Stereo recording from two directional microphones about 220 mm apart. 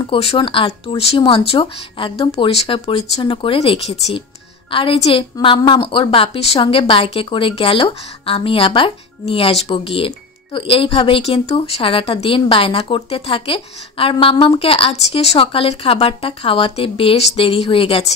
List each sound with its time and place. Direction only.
0.0 s speech: 25° left (ahead or behind)